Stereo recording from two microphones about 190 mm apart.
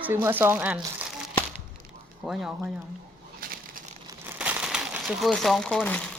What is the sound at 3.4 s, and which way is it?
Crumpling, 50° right (ahead or behind).